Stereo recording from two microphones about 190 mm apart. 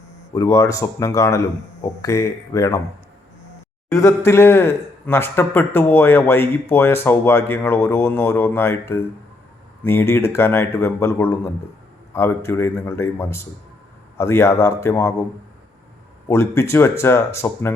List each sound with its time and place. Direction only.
0.3 s a man's voice: 15° left (ahead or behind)
3.8 s a man's voice: 15° left (ahead or behind)
16.3 s a man's voice: 15° left (ahead or behind)